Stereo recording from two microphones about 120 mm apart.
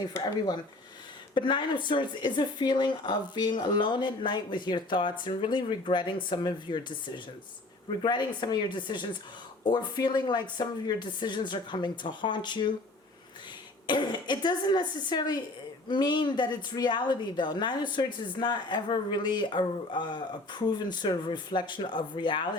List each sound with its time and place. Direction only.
1.3 s a woman's voice: 40° left (ahead or behind)
8.0 s a woman's voice: 40° left (ahead or behind)
13.8 s a woman's voice: 40° left (ahead or behind)